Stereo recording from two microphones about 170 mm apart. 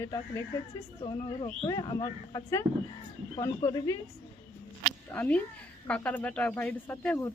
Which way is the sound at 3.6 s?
20° left (ahead or behind).